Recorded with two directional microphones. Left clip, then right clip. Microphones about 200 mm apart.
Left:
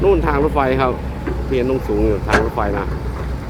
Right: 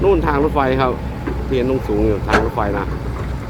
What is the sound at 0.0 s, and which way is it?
Speech, centre (ahead or behind).